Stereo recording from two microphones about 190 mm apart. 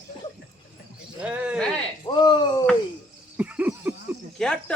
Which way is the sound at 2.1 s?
20° left (ahead or behind).